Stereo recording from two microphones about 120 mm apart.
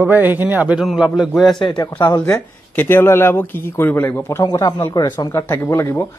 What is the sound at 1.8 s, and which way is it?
Speech, 30° left (ahead or behind).